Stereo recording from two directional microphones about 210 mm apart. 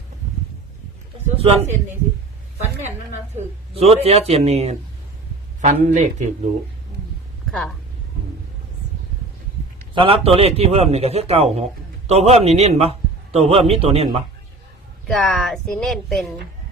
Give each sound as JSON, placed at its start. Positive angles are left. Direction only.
{"t": 1.4, "sound": "a man's voice", "side_deg": -30}
{"t": 3.3, "sound": "a man's voice", "side_deg": -30}
{"t": 7.5, "sound": "speech", "side_deg": 0}
{"t": 9.9, "sound": "a man's voice", "side_deg": -25}
{"t": 15.0, "sound": "a woman's voice", "side_deg": 5}